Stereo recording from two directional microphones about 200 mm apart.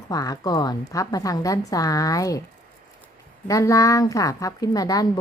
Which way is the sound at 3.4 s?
15° left (ahead or behind).